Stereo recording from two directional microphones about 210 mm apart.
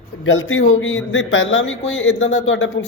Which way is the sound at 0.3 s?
65° left (ahead or behind).